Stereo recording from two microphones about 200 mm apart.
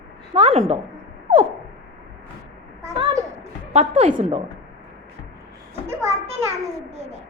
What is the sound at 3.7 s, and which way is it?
Speech, 35° right (ahead or behind).